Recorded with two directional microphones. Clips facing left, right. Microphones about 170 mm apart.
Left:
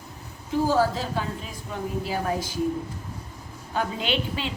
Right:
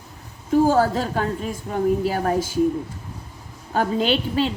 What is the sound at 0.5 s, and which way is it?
A woman's voice, 50° right (ahead or behind).